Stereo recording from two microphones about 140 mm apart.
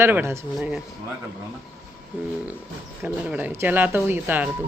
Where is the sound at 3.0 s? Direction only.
10° right (ahead or behind).